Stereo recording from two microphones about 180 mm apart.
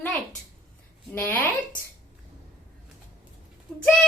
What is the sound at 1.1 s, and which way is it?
Speech, 10° left (ahead or behind).